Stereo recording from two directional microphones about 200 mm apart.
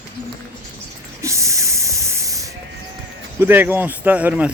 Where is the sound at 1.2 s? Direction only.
15° right (ahead or behind).